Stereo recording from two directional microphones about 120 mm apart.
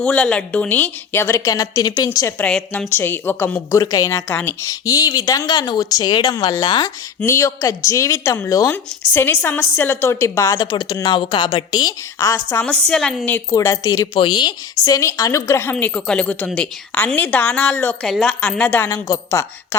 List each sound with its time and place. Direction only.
0.0 s a woman's voice: 5° left (ahead or behind); by 2.0 s 30° left (ahead or behind)
2.4 s a woman's voice: 10° left (ahead or behind)
2.9 s a woman's voice: 20° left (ahead or behind); by 6.9 s 35° left (ahead or behind)
7.3 s a woman's voice: 25° left (ahead or behind)
12.6 s a woman's voice: 10° left (ahead or behind); by 14.2 s 30° left (ahead or behind)
14.2 s a woman's voice: 40° left (ahead or behind); by 15.7 s 25° left (ahead or behind)
15.7 s a woman's voice: 5° left (ahead or behind)
18.0 s a woman's voice: 5° left (ahead or behind)
18.9 s a woman's voice: 25° left (ahead or behind)